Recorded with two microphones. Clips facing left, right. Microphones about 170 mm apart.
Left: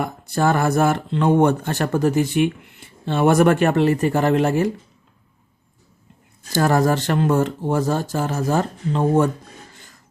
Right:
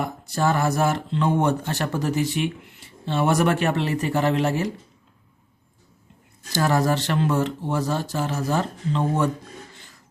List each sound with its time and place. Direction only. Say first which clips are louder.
0.0 s speech: left 3 dB; 55° left (ahead or behind)
6.5 s speech: left 4 dB; 45° left (ahead or behind)